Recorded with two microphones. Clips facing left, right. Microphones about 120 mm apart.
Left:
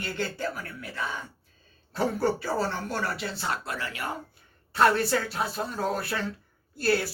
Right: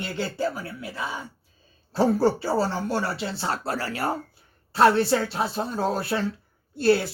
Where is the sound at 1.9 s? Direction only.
30° right (ahead or behind).